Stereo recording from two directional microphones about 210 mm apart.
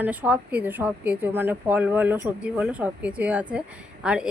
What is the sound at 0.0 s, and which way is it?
A woman's voice, 10° right (ahead or behind).